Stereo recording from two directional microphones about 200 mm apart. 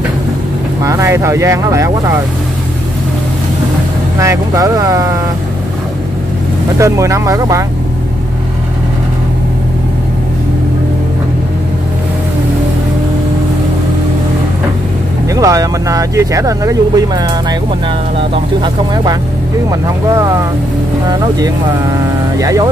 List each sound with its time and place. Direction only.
0.8 s speech: 15° right (ahead or behind)
4.2 s speech: 15° right (ahead or behind)
6.8 s speech: 15° right (ahead or behind)
15.2 s speech: 15° right (ahead or behind)
22.4 s speech: 15° right (ahead or behind)